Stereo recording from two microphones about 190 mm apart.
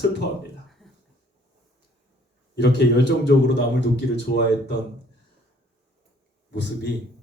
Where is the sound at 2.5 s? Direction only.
65° left (ahead or behind).